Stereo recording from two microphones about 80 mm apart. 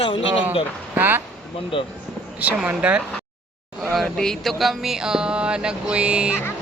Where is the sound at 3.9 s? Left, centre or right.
Centre.